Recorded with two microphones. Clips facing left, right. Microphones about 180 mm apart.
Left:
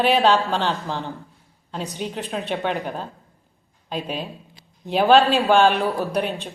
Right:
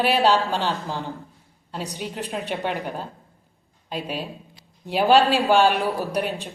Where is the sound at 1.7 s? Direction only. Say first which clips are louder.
Left 2 dB; 10° right (ahead or behind).